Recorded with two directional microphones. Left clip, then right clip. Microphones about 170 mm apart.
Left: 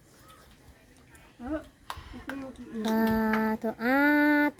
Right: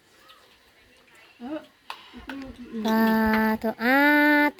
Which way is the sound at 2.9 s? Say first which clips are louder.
Right 5 dB; 5° left (ahead or behind).